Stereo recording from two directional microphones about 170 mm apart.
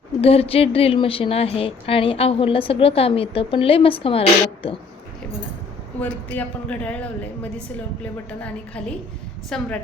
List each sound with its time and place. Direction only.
0.2 s a woman's voice: 35° left (ahead or behind)
6.0 s a man's voice: 10° left (ahead or behind)
8.3 s a man's voice: 10° left (ahead or behind)